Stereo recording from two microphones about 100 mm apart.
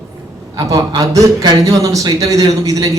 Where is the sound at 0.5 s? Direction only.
40° right (ahead or behind).